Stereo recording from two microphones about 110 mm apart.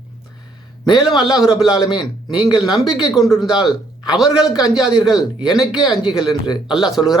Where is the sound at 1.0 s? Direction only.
5° right (ahead or behind).